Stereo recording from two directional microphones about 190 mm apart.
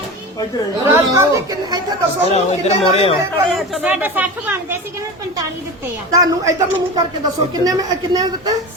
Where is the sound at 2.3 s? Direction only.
35° left (ahead or behind).